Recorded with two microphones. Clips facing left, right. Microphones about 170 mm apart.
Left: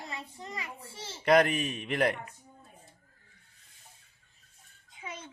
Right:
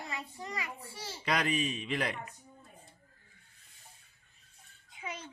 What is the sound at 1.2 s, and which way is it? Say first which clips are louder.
A man's voice: left 8 dB; 55° left (ahead or behind).